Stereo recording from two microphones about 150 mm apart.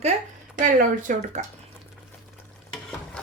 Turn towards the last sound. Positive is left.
turn(degrees=0)  # may be behind; listen again after turning